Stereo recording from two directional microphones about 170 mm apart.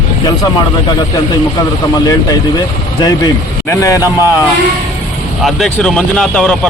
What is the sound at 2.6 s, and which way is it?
Speech, 25° left (ahead or behind).